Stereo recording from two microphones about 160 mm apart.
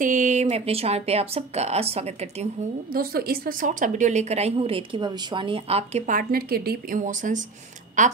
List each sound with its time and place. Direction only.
0.0 s speech: 55° right (ahead or behind)
2.9 s a woman's voice: 70° right (ahead or behind)
7.0 s a woman's voice: 55° right (ahead or behind)